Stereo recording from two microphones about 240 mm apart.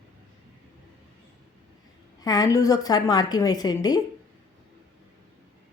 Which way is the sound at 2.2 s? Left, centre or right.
Centre.